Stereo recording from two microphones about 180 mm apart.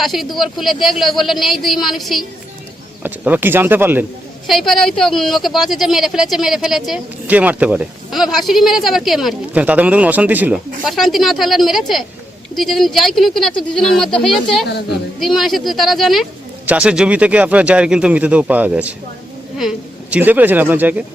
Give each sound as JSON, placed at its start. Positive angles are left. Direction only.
{"t": 0.0, "sound": "speech", "side_deg": 0}
{"t": 4.4, "sound": "speech", "side_deg": 0}